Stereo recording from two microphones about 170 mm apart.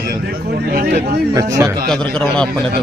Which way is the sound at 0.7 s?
60° right (ahead or behind).